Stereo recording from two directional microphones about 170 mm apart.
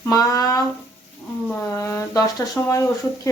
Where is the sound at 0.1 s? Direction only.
20° left (ahead or behind).